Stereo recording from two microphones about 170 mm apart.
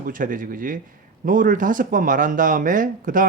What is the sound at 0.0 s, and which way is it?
Speech, 55° right (ahead or behind).